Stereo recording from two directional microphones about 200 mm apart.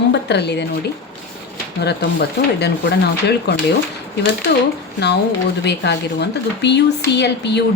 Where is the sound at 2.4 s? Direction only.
55° left (ahead or behind).